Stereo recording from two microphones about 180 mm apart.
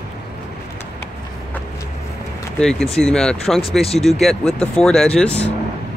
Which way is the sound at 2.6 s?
5° left (ahead or behind).